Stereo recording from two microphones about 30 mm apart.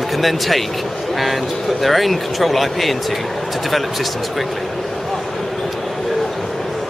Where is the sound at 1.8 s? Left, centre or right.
Centre.